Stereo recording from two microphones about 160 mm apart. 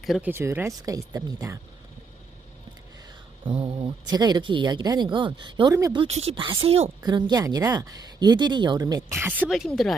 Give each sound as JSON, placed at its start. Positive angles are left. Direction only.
{"t": 0.2, "sound": "speech", "side_deg": -15}
{"t": 3.4, "sound": "speech", "side_deg": -35}
{"t": 7.0, "sound": "speech", "side_deg": -25}
{"t": 9.5, "sound": "speech", "side_deg": 0}